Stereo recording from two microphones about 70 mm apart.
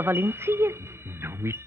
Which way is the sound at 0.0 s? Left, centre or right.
Right.